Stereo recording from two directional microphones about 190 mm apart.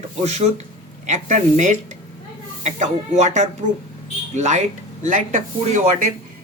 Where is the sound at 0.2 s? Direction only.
35° right (ahead or behind).